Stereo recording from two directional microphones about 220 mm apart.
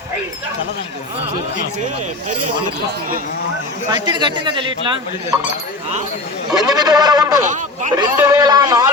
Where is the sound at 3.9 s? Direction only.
20° right (ahead or behind).